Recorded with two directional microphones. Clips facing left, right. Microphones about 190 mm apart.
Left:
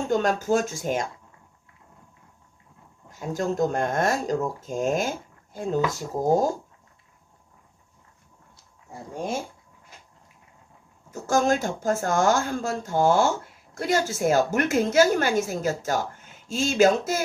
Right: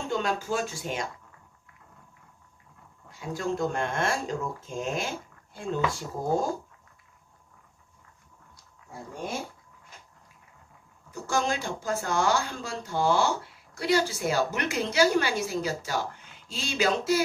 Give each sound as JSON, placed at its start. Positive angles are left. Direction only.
{"t": 0.1, "sound": "speech", "side_deg": 45}
{"t": 3.1, "sound": "speech", "side_deg": 45}
{"t": 11.1, "sound": "speech", "side_deg": 45}